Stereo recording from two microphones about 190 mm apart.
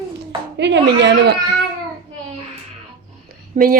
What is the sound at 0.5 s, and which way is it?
Speech, 65° right (ahead or behind).